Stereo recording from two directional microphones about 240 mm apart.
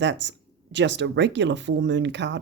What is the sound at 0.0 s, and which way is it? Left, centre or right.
Speech, right.